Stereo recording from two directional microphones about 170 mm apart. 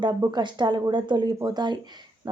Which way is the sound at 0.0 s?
25° right (ahead or behind).